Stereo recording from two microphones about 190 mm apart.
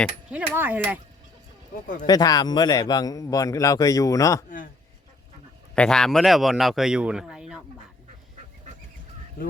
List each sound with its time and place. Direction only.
0.5 s speech: 10° right (ahead or behind)
2.0 s a man's voice: 20° left (ahead or behind)
4.4 s a man's voice: 45° left (ahead or behind)
5.7 s speech: 5° left (ahead or behind)